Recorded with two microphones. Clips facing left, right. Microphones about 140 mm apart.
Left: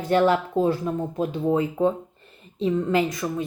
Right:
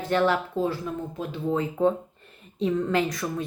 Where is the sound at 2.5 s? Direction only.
Centre (ahead or behind).